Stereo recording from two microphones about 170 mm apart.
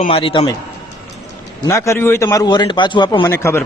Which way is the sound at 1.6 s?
15° left (ahead or behind).